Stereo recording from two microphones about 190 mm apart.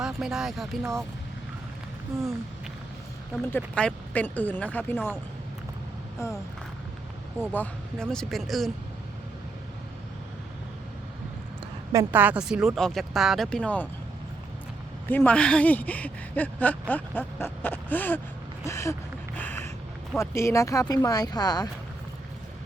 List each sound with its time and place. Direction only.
0.0 s speech: 5° right (ahead or behind)
3.4 s speech: 10° left (ahead or behind)
7.5 s speech: 10° left (ahead or behind)
11.9 s speech: 15° right (ahead or behind); by 13.8 s 5° left (ahead or behind)
15.0 s speech: 10° left (ahead or behind)
19.4 s a sound: 10° left (ahead or behind)
20.1 s speech: 15° left (ahead or behind)